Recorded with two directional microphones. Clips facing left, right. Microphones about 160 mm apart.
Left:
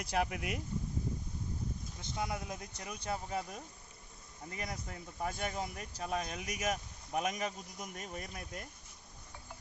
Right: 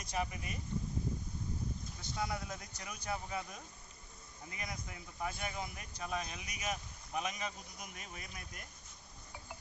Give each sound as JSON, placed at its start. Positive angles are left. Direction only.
{"t": 0.0, "sound": "speech", "side_deg": 70}
{"t": 2.0, "sound": "speech", "side_deg": 20}